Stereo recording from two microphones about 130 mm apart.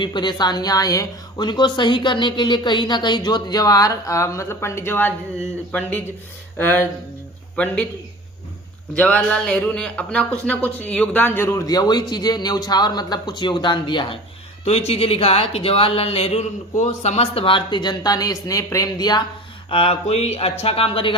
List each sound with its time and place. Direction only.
0.0 s a woman's voice: 35° left (ahead or behind); by 5.1 s 15° left (ahead or behind)
6.6 s a man's voice: 15° left (ahead or behind)
9.0 s speech: 10° left (ahead or behind); by 14.2 s 40° left (ahead or behind)
14.6 s speech: 55° left (ahead or behind)
16.7 s a woman's voice: 65° left (ahead or behind); by 19.2 s 30° left (ahead or behind)
19.7 s speech: 50° left (ahead or behind)